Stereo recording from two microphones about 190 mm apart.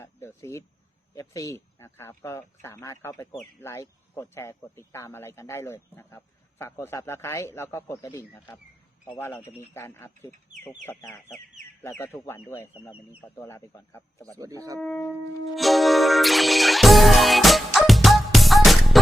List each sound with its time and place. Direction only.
0.0 s speech: 15° left (ahead or behind)
14.3 s speech: 15° right (ahead or behind)
14.8 s shofar: 5° left (ahead or behind)
15.5 s music: centre (ahead or behind)